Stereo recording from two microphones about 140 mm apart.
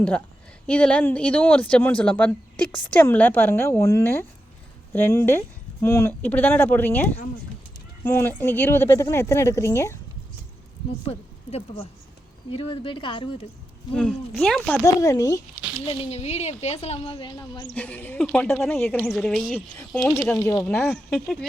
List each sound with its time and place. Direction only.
0.7 s a woman's voice: 10° left (ahead or behind)
11.0 s speech: 50° left (ahead or behind)
13.9 s speech: 5° left (ahead or behind)
15.0 s a woman's voice: 25° left (ahead or behind)
15.9 s speech: 45° left (ahead or behind)
17.7 s speech: 10° left (ahead or behind)
19.0 s speech: centre (ahead or behind)
20.4 s a woman's voice: 25° left (ahead or behind)
20.9 s speech: 5° left (ahead or behind)